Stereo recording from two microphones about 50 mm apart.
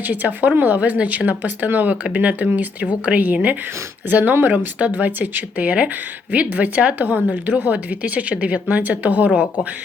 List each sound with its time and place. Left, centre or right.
0.0 s speech: right